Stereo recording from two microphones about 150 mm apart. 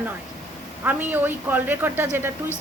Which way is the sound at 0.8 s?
10° right (ahead or behind).